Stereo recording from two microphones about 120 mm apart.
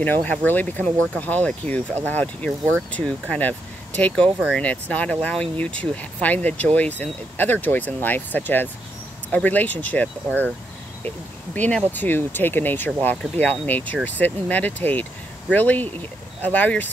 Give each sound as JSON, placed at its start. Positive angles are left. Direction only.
{"t": 0.0, "sound": "speech", "side_deg": 15}
{"t": 11.5, "sound": "speech", "side_deg": 15}